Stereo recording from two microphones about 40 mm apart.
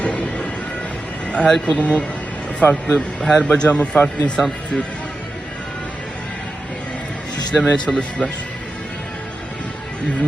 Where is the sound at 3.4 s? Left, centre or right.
Left.